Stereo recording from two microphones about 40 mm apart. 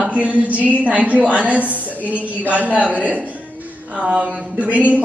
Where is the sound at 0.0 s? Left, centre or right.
Right.